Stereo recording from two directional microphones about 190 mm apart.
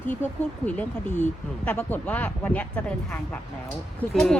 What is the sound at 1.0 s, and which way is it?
Speech, 40° left (ahead or behind).